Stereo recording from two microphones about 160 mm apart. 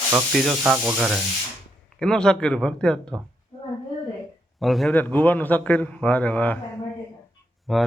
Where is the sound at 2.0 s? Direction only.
5° left (ahead or behind).